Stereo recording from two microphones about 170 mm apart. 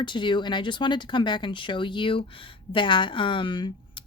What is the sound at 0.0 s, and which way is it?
Speech, 25° left (ahead or behind).